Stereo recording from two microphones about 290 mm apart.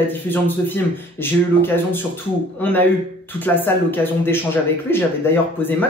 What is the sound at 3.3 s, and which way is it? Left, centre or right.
Speech, centre.